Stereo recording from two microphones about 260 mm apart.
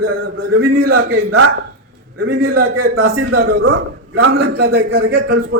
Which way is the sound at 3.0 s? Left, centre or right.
Right.